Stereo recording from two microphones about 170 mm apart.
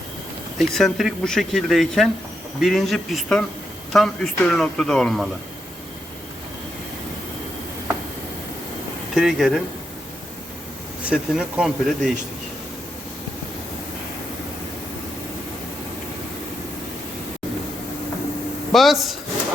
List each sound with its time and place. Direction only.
0.6 s speech: centre (ahead or behind)
9.1 s speech: centre (ahead or behind)
11.0 s speech: 5° right (ahead or behind)
18.7 s speech: centre (ahead or behind)